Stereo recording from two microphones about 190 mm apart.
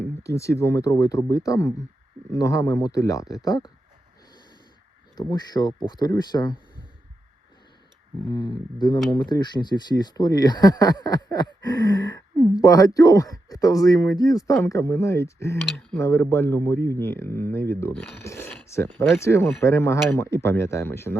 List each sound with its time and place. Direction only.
0.0 s speech: 15° left (ahead or behind)
5.1 s speech: 20° left (ahead or behind)
8.3 s speech: 25° left (ahead or behind)